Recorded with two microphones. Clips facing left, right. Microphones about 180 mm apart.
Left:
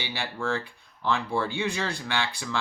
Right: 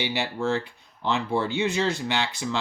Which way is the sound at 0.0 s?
20° right (ahead or behind).